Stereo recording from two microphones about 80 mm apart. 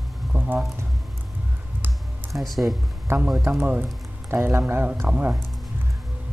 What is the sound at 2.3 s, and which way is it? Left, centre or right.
Speech, centre.